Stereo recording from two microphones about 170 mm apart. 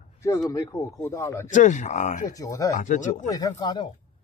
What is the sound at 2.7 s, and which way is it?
Speech, 45° left (ahead or behind).